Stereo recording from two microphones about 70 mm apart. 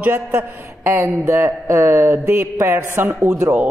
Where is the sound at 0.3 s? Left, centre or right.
Right.